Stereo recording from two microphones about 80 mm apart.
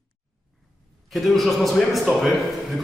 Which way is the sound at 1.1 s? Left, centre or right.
Centre.